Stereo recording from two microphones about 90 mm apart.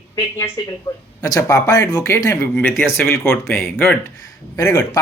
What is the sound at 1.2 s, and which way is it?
Speech, 40° left (ahead or behind).